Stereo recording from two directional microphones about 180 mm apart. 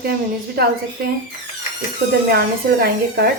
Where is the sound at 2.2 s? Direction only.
60° right (ahead or behind).